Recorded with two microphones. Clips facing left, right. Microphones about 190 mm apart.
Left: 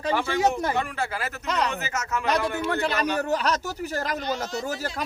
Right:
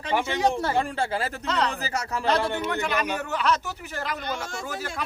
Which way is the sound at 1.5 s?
15° left (ahead or behind).